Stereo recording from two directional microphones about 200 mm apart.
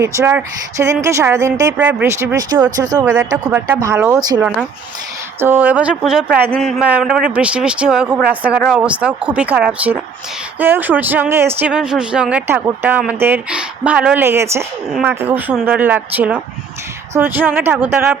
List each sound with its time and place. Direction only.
0.0 s speech: 10° right (ahead or behind)